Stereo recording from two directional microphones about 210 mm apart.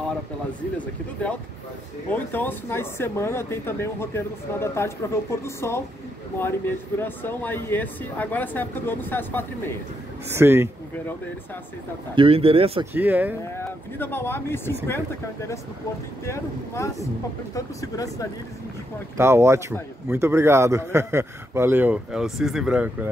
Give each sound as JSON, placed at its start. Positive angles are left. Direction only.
{"t": 2.0, "sound": "speech", "side_deg": 10}
{"t": 10.3, "sound": "a man's voice", "side_deg": -10}
{"t": 12.2, "sound": "speech", "side_deg": -25}
{"t": 12.9, "sound": "a man's voice", "side_deg": -10}
{"t": 13.6, "sound": "speech", "side_deg": 10}
{"t": 16.3, "sound": "speech", "side_deg": 15}
{"t": 19.1, "sound": "a man's voice", "side_deg": -10}